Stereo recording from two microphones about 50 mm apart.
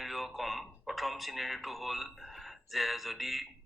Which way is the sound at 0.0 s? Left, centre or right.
Centre.